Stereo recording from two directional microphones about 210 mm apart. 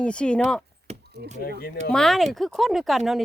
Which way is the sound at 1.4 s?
45° left (ahead or behind).